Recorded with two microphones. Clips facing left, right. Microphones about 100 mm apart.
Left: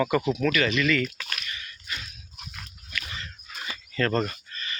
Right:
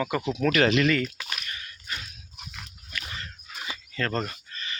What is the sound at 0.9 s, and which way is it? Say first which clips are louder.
Speech: even; 30° right (ahead or behind).